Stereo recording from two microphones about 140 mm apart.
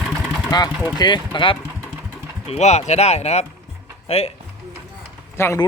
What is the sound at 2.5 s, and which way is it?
Speech, 55° left (ahead or behind).